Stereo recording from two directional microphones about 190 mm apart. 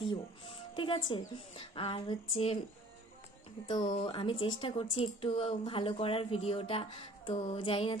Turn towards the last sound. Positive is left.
turn(degrees=30)  # may be behind; listen again after turning